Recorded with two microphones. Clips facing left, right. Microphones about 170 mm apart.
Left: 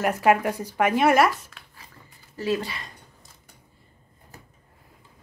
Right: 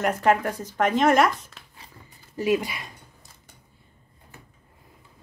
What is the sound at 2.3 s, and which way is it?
Speech, 15° right (ahead or behind).